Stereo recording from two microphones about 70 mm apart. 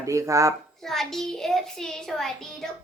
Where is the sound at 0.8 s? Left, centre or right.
Centre.